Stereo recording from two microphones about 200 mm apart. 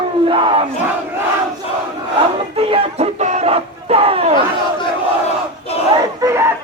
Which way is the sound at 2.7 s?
35° right (ahead or behind).